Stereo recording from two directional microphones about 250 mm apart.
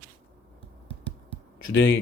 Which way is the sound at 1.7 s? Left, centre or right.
Left.